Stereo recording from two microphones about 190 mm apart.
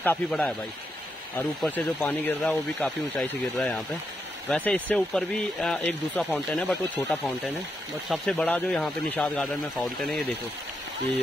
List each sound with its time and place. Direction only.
0.0 s speech: 5° left (ahead or behind)
1.6 s speech: 5° left (ahead or behind)